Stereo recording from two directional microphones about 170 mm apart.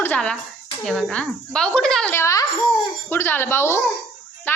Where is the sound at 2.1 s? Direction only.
15° left (ahead or behind).